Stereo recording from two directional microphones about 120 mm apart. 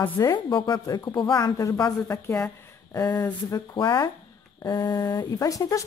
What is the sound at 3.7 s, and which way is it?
Speech, 40° left (ahead or behind).